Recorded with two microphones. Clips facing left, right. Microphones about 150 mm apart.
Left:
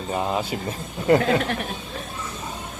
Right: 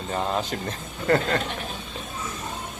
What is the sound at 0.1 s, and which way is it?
Speech, 10° left (ahead or behind).